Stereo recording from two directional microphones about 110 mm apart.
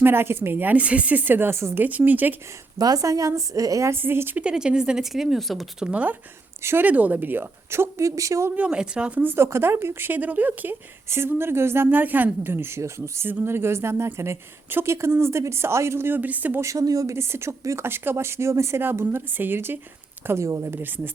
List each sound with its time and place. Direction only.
0.0 s a woman's voice: 20° right (ahead or behind)
2.7 s a woman's voice: 35° right (ahead or behind)
8.5 s speech: 10° right (ahead or behind)